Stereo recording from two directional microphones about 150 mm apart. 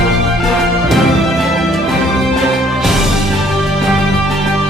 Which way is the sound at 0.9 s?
Centre (ahead or behind).